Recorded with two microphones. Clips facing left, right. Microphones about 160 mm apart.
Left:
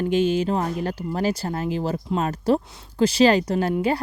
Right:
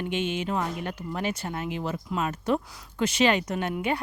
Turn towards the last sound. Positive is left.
turn(degrees=35)  # may be behind; listen again after turning